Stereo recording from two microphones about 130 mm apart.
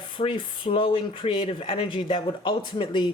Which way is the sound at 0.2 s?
40° left (ahead or behind).